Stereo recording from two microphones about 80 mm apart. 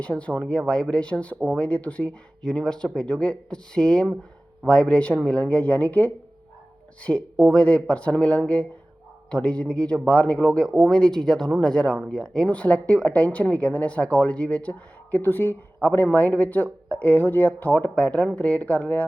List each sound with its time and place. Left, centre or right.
0.0 s a woman's voice: centre